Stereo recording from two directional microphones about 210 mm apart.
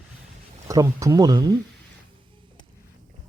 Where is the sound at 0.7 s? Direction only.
15° right (ahead or behind).